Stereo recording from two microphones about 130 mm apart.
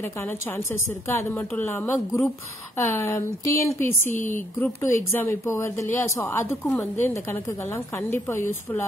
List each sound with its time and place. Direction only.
0.0 s a woman's voice: 20° left (ahead or behind)
6.6 s a woman's voice: centre (ahead or behind)
7.0 s a woman's voice: 20° left (ahead or behind)